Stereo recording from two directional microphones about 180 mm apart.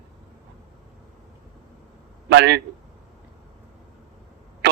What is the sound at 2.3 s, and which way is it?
Speech, 70° right (ahead or behind).